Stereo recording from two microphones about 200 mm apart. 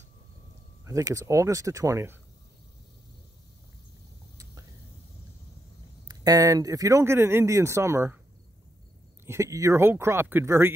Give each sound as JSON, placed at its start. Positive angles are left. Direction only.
{"t": 0.8, "sound": "speech", "side_deg": -15}
{"t": 6.0, "sound": "speech", "side_deg": -20}
{"t": 9.2, "sound": "speech", "side_deg": -15}